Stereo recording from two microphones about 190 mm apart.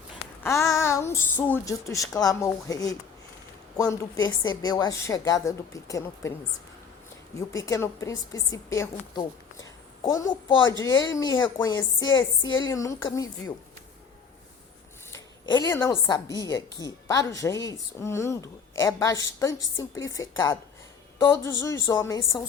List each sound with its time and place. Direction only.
0.4 s a woman's voice: 15° left (ahead or behind)
7.3 s a woman's voice: 15° left (ahead or behind)
15.1 s a woman's voice: 20° left (ahead or behind)